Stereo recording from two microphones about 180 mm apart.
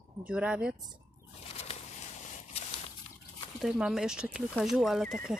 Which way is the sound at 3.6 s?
5° right (ahead or behind).